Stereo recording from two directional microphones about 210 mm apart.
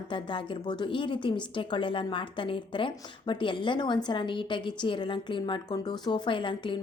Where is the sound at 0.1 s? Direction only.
25° left (ahead or behind).